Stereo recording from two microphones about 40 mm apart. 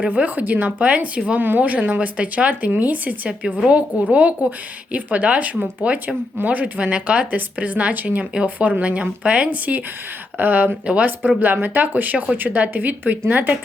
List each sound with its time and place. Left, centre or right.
0.0 s speech: right
0.3 s speech: right
1.4 s speech: right
3.6 s speech: right
8.2 s speech: right
8.4 s speech: right